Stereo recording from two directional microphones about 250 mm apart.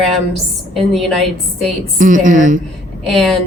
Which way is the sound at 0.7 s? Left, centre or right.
Centre.